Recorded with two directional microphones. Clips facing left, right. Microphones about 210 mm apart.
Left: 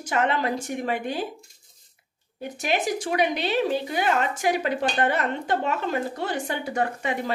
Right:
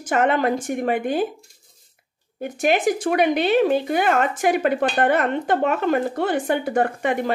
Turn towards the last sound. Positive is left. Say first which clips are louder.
# right 5 dB
turn(degrees=-55)  # may be behind; listen again after turning